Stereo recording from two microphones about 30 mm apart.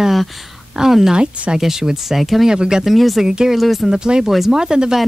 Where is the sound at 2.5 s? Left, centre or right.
Right.